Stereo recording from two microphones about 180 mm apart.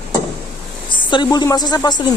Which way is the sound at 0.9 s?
25° left (ahead or behind).